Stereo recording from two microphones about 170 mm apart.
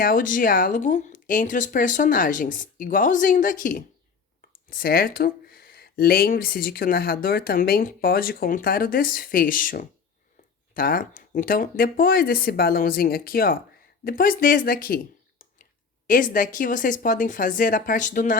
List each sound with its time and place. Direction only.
0.0 s speech: 55° left (ahead or behind)